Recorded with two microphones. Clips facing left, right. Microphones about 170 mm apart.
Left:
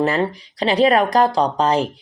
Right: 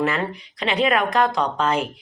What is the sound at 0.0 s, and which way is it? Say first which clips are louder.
Speech: left 4 dB; 35° left (ahead or behind).